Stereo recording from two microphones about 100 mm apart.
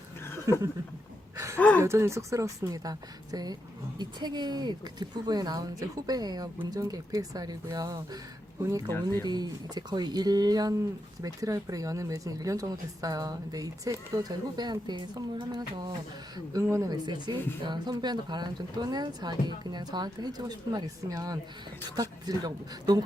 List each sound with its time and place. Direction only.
0.5 s speech: 35° right (ahead or behind)
1.5 s speech: 15° left (ahead or behind)
1.8 s speech: 30° right (ahead or behind)
9.2 s speech: 45° right (ahead or behind)
16.3 s speech: 35° right (ahead or behind)
16.9 s speech: 45° right (ahead or behind)